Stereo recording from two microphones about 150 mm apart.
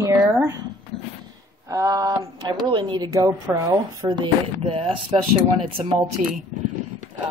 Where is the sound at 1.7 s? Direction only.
25° right (ahead or behind).